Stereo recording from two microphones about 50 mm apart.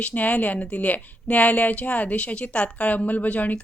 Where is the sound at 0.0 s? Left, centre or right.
Left.